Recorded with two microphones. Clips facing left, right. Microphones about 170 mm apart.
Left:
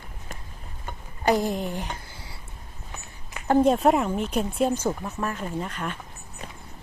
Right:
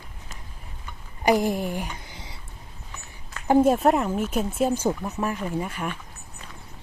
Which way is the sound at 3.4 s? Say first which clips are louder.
Right 1 dB; 5° right (ahead or behind).